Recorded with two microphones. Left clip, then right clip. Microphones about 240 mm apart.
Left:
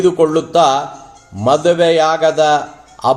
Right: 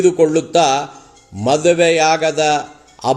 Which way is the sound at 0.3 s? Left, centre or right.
Centre.